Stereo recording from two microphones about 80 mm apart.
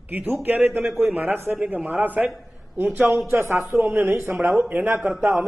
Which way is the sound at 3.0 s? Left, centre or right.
Centre.